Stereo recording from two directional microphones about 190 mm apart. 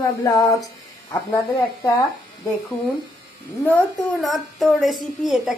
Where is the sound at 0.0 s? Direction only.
15° left (ahead or behind).